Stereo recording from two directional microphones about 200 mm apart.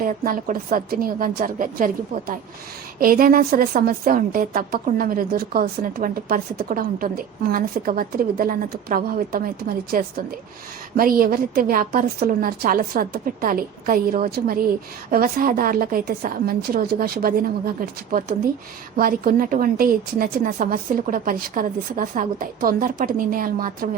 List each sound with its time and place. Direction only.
0.0 s a woman's voice: 45° right (ahead or behind)